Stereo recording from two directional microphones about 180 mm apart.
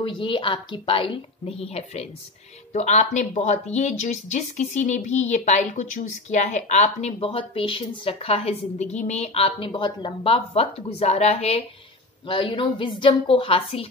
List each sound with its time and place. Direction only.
0.0 s a woman's voice: 25° left (ahead or behind)